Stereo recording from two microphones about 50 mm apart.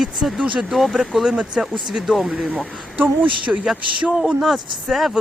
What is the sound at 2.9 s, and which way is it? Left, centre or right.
Speech, right.